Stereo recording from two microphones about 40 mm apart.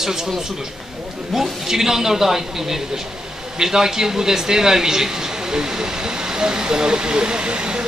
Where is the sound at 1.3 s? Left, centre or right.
Centre.